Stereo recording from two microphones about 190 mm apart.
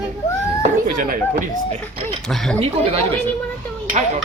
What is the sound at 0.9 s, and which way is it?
Speech, 45° right (ahead or behind).